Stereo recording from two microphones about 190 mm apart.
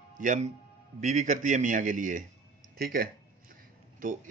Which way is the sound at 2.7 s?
55° right (ahead or behind).